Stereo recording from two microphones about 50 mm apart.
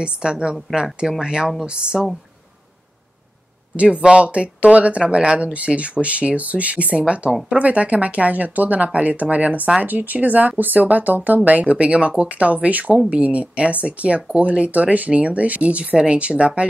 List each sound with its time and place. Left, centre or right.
0.0 s speech: centre
3.7 s speech: right